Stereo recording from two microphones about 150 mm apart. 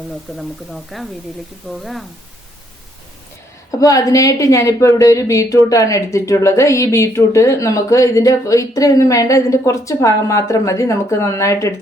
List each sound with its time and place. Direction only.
0.3 s speech: centre (ahead or behind)
3.7 s a woman's voice: 25° left (ahead or behind)